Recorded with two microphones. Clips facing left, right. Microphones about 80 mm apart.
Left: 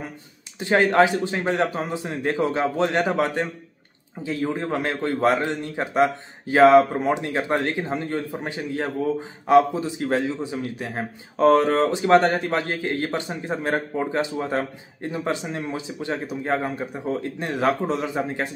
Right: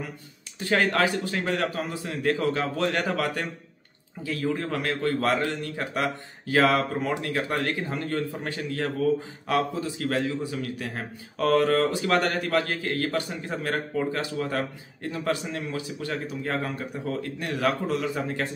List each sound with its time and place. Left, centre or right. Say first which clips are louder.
0.6 s a man's voice: left 6 dB; left